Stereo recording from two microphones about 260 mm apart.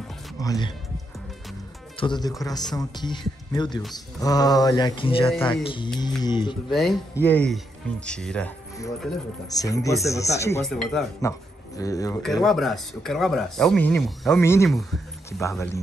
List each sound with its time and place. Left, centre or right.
0.4 s speech: centre
2.0 s speech: centre
5.9 s mantra: centre
6.7 s speech: centre
11.1 s speech: centre
12.4 s speech: centre
15.4 s speech: centre